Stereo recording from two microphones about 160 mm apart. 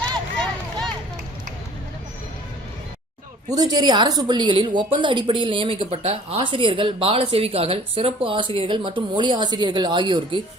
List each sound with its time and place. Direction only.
3.5 s a woman's voice: 25° right (ahead or behind)